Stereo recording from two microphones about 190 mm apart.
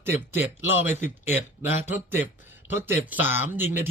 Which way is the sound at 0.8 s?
10° right (ahead or behind).